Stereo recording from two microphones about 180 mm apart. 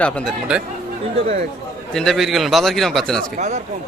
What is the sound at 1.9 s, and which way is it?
A man's voice, centre (ahead or behind).